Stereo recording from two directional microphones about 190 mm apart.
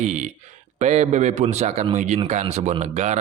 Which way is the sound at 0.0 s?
40° right (ahead or behind).